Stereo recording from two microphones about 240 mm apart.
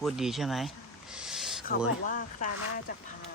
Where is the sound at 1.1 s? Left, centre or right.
Centre.